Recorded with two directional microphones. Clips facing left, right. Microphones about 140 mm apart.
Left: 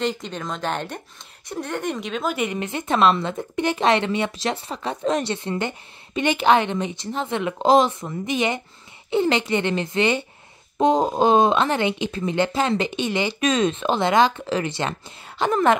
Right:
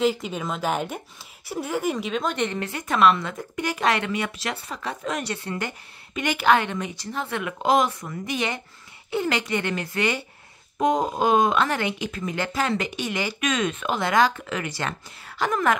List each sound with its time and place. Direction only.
0.0 s a woman's voice: 5° right (ahead or behind); by 15.8 s 25° left (ahead or behind)